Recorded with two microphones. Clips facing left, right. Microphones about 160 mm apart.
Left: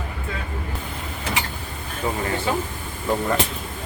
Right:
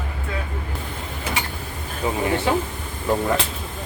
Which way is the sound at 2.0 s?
15° right (ahead or behind).